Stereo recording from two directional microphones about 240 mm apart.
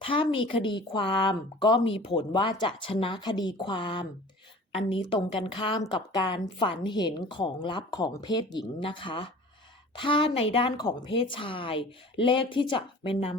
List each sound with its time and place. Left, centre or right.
0.0 s a woman's voice: left